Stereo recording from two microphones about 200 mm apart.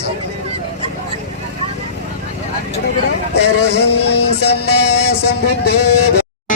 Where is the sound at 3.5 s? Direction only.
55° left (ahead or behind).